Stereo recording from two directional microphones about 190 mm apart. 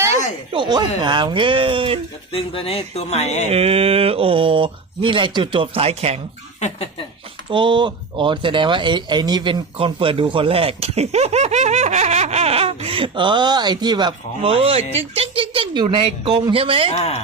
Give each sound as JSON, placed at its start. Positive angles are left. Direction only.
{"t": 0.5, "sound": "speech", "side_deg": -25}
{"t": 2.3, "sound": "speech", "side_deg": 30}
{"t": 3.5, "sound": "speech", "side_deg": -30}
{"t": 6.6, "sound": "speech", "side_deg": 35}
{"t": 7.5, "sound": "speech", "side_deg": -25}
{"t": 16.9, "sound": "speech", "side_deg": 35}